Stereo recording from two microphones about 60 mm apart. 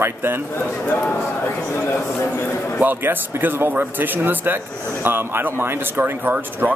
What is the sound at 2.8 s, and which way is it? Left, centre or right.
Speech, right.